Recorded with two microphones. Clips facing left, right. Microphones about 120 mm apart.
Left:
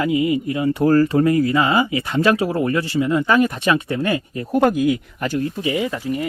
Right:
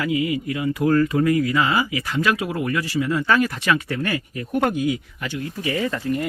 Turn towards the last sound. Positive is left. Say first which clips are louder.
# left 1 dB
turn(degrees=10)  # may be behind; listen again after turning